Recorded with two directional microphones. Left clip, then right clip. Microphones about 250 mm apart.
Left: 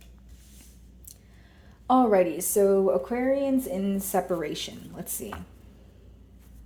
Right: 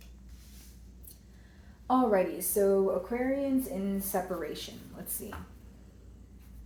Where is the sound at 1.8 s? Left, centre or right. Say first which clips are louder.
Left 6 dB; left.